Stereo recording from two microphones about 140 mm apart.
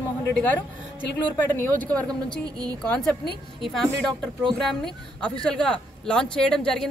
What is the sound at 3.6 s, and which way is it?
A woman's voice, centre (ahead or behind).